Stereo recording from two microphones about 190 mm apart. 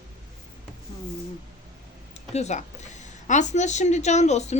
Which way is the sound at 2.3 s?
35° left (ahead or behind).